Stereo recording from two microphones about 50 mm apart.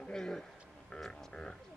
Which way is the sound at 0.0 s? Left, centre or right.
Centre.